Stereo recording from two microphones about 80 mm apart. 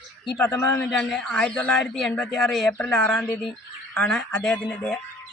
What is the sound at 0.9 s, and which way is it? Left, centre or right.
Speech, centre.